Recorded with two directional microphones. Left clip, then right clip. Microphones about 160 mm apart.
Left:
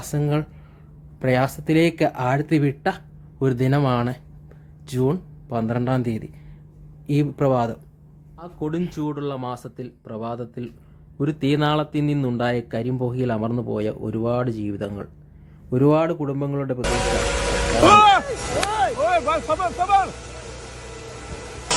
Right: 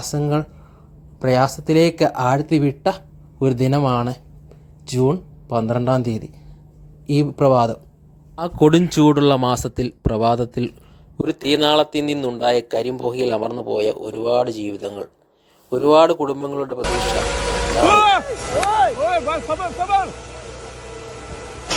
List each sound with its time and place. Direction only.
0.0 s speech: centre (ahead or behind)
8.4 s speech: 50° right (ahead or behind); by 16.8 s 25° right (ahead or behind)
16.8 s vehicle: centre (ahead or behind)